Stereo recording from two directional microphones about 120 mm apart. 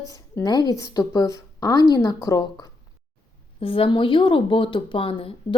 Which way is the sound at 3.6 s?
50° left (ahead or behind).